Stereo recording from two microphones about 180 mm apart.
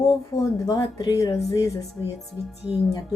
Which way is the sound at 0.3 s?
20° left (ahead or behind).